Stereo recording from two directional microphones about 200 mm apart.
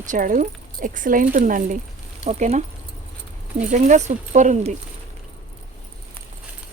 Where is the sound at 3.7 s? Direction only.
35° right (ahead or behind).